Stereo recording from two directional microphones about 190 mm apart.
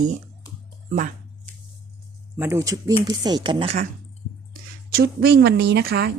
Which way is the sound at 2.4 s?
15° right (ahead or behind).